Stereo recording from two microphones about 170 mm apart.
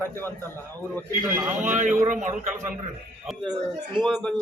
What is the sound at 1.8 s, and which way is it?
Speech, 45° right (ahead or behind).